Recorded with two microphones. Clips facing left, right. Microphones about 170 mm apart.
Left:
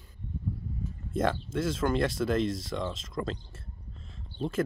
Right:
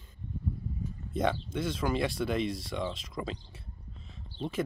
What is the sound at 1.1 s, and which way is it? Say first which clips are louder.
Speech: left 2 dB; centre (ahead or behind).